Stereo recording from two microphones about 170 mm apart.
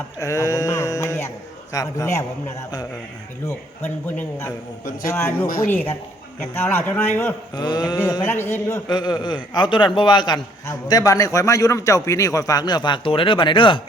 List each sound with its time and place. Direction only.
0.2 s a sound: 20° left (ahead or behind)
1.7 s a man's voice: 20° left (ahead or behind)
3.8 s a man's voice: 10° left (ahead or behind)
7.5 s a man's voice: 25° left (ahead or behind)
8.2 s a man's voice: 10° left (ahead or behind)
8.9 s a man's voice: 25° left (ahead or behind)